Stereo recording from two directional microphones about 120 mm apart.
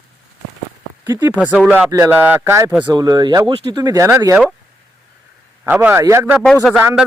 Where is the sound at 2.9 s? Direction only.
35° right (ahead or behind).